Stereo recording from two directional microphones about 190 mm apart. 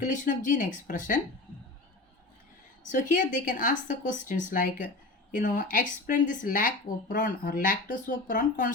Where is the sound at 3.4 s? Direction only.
45° left (ahead or behind).